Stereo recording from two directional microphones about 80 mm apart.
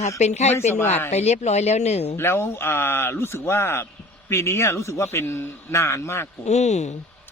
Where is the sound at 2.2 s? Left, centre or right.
Left.